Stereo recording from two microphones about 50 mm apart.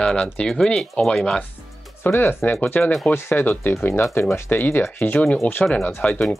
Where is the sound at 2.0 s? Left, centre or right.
Left.